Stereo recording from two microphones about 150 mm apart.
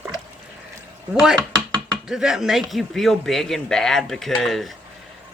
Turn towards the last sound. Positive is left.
turn(degrees=0)  # may be behind; listen again after turning